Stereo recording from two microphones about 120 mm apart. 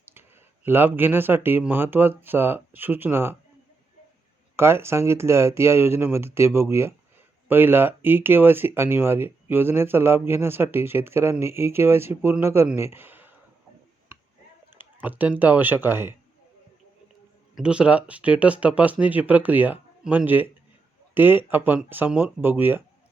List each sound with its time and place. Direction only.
0.0 s speech: 15° right (ahead or behind)
4.5 s speech: 20° right (ahead or behind)
14.8 s speech: 15° right (ahead or behind)
17.5 s speech: 10° right (ahead or behind)